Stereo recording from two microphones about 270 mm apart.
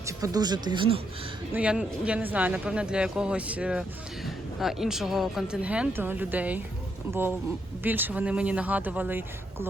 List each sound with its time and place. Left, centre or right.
0.0 s speech: centre
1.5 s speech: centre